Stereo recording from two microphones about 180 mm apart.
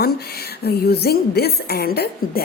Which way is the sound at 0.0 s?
60° left (ahead or behind).